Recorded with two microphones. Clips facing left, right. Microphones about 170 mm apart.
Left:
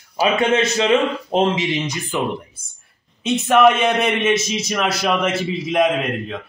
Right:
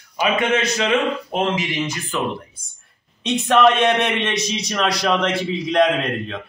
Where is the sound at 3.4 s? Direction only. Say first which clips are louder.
Left 1 dB; 5° left (ahead or behind).